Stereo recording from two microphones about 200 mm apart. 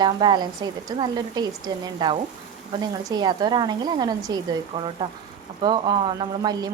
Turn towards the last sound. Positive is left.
turn(degrees=-20)  # may be behind; listen again after turning